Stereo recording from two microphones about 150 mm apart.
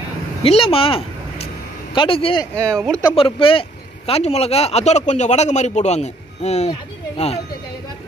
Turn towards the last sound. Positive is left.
turn(degrees=45)  # may be behind; listen again after turning